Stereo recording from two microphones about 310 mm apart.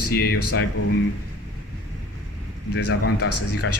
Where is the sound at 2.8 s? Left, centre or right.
Left.